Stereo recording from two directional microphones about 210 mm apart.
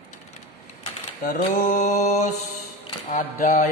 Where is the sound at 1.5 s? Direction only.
35° left (ahead or behind).